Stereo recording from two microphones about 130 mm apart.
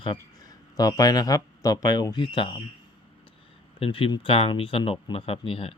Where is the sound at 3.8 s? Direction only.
45° left (ahead or behind).